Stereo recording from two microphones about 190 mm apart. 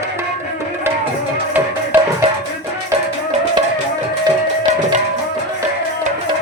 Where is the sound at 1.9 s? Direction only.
10° right (ahead or behind).